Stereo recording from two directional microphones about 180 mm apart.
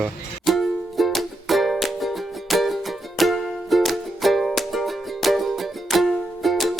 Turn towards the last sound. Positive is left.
turn(degrees=0)  # may be behind; listen again after turning